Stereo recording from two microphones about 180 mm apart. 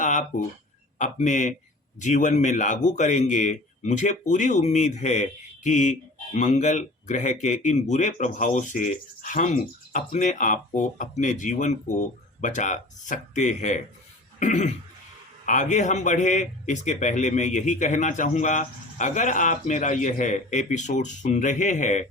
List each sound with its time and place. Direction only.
0.0 s a sound: 45° left (ahead or behind)
0.9 s a man's voice: 45° left (ahead or behind)
14.3 s cough: 40° left (ahead or behind)
15.4 s a man's voice: 45° left (ahead or behind)